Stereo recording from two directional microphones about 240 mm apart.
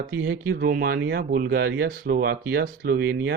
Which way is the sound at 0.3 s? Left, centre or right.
Right.